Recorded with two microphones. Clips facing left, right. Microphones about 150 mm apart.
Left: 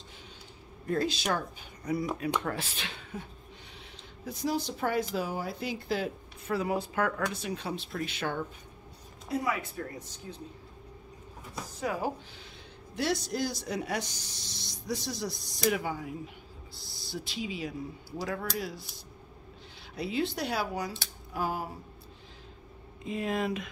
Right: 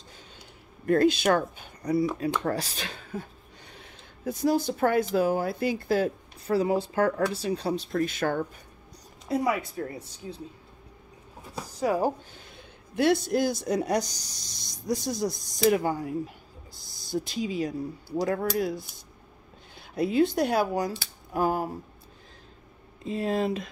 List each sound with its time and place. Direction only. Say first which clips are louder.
0.8 s speech: right 8 dB; 60° right (ahead or behind)
1.8 s speech: right 6 dB; 35° right (ahead or behind)
6.5 s speech: right 6 dB; 30° right (ahead or behind)
9.4 s speech: right 6 dB; 30° right (ahead or behind)
11.8 s speech: right 7 dB; 35° right (ahead or behind)
12.9 s speech: right 8 dB; 55° right (ahead or behind)
18.1 s speech: right 8 dB; 55° right (ahead or behind)
20.0 s speech: right 8 dB; 50° right (ahead or behind)
21.3 s a sound: right 7 dB; 50° right (ahead or behind)
23.0 s speech: right 4 dB; 35° right (ahead or behind)